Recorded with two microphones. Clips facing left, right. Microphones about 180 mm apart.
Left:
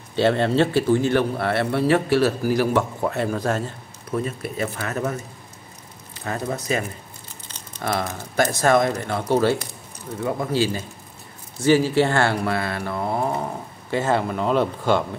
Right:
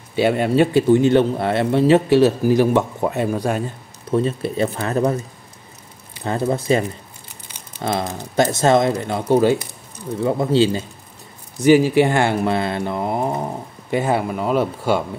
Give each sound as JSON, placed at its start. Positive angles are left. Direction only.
{"t": 0.1, "sound": "speech", "side_deg": -10}
{"t": 4.1, "sound": "speech", "side_deg": -30}
{"t": 6.2, "sound": "speech", "side_deg": -30}
{"t": 7.4, "sound": "crumpling", "side_deg": -10}
{"t": 7.8, "sound": "speech", "side_deg": -25}